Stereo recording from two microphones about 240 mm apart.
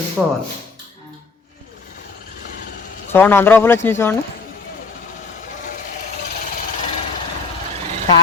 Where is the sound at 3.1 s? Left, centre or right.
Centre.